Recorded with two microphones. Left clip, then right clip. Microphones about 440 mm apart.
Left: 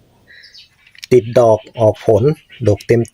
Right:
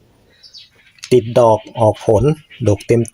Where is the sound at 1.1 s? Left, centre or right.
Left.